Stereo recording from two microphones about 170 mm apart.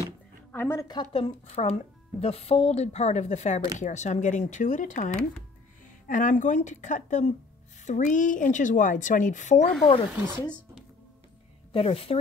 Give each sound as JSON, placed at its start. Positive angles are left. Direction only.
{"t": 0.0, "sound": "a sound", "side_deg": 15}
{"t": 1.1, "sound": "a woman's voice", "side_deg": 35}
{"t": 10.1, "sound": "speech", "side_deg": -10}
{"t": 11.7, "sound": "speech", "side_deg": 35}